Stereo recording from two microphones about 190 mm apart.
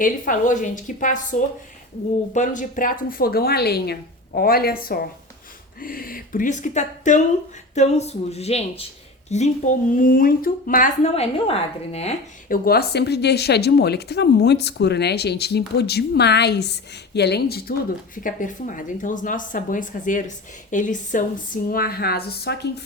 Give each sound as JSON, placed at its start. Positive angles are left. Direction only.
{"t": 0.0, "sound": "a woman's voice", "side_deg": 45}
{"t": 11.1, "sound": "a woman's voice", "side_deg": 30}
{"t": 12.5, "sound": "a woman's voice", "side_deg": 55}